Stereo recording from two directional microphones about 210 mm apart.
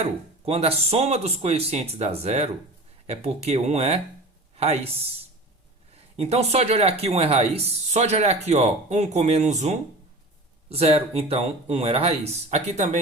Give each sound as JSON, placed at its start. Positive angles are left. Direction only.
{"t": 0.0, "sound": "speech", "side_deg": -30}
{"t": 6.1, "sound": "speech", "side_deg": -30}